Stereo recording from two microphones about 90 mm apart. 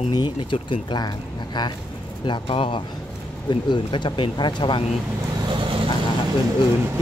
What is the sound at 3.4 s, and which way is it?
Speech, 60° left (ahead or behind).